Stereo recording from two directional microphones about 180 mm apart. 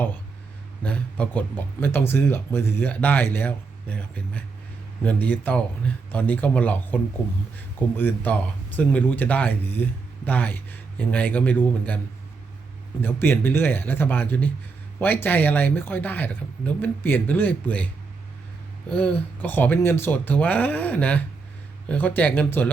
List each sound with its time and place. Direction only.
0.8 s speech: 5° left (ahead or behind)
13.0 s speech: 10° left (ahead or behind)
18.9 s speech: 10° left (ahead or behind)